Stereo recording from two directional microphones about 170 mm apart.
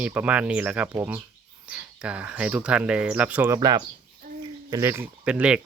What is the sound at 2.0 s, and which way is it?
Speech, 5° right (ahead or behind).